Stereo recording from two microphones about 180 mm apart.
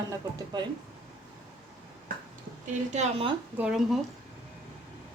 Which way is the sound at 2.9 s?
35° right (ahead or behind).